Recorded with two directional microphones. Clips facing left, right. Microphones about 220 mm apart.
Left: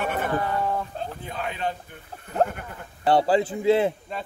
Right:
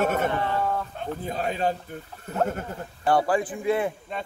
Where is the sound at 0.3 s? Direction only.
25° right (ahead or behind).